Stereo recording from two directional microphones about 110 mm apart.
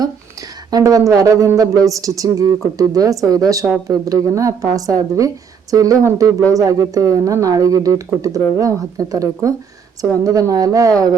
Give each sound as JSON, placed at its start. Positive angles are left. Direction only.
{"t": 0.7, "sound": "speech", "side_deg": -30}